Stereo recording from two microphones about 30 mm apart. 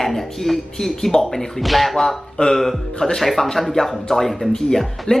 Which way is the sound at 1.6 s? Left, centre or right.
Centre.